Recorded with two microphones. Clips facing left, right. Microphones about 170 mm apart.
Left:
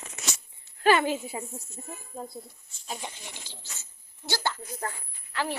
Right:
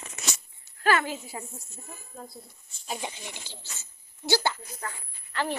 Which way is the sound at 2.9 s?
10° right (ahead or behind).